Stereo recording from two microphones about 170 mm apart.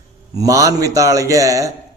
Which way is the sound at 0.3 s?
20° right (ahead or behind).